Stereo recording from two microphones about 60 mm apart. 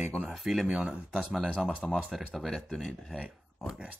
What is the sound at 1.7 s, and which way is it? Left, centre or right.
Speech, centre.